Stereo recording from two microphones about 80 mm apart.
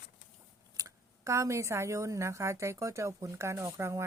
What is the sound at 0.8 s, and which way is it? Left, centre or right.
Speech, right.